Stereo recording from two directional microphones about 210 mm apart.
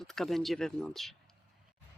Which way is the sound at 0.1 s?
Centre (ahead or behind).